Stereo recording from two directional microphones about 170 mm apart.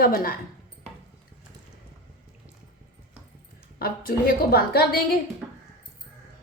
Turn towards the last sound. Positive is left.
turn(degrees=65)  # may be behind; listen again after turning